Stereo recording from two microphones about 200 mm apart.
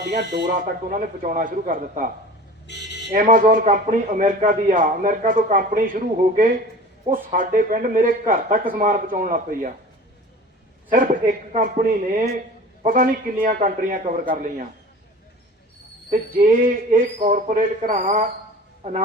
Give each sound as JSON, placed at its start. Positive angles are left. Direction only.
{"t": 0.0, "sound": "speech", "side_deg": -55}
{"t": 0.6, "sound": "speech", "side_deg": -45}
{"t": 2.6, "sound": "buzzer", "side_deg": 60}
{"t": 3.1, "sound": "speech", "side_deg": -40}
{"t": 10.8, "sound": "speech", "side_deg": -40}
{"t": 12.8, "sound": "speech", "side_deg": -40}
{"t": 16.0, "sound": "speech", "side_deg": -40}